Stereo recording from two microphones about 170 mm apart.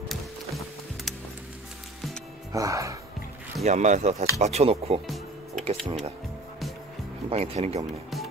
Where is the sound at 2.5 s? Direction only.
20° right (ahead or behind).